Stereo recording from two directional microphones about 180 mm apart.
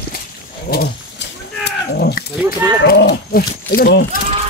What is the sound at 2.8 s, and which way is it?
Speech, 65° left (ahead or behind).